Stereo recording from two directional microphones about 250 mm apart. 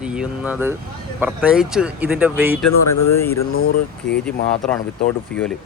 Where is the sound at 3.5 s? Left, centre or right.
Left.